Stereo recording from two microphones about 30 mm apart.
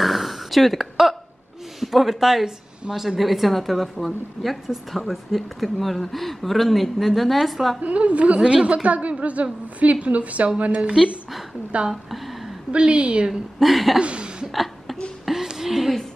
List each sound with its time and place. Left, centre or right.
0.0 s a sound: centre
1.8 s a woman's voice: centre
3.2 s speech: centre
7.8 s a woman's voice: right
11.9 s a woman's voice: centre
12.7 s a woman's voice: right
13.3 s speech: centre
13.9 s a woman's voice: right
14.5 s a sound: centre